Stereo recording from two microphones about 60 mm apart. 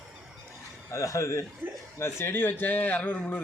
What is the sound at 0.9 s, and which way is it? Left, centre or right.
Speech, left.